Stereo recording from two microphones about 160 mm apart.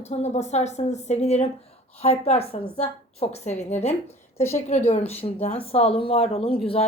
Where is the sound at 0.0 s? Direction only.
45° left (ahead or behind).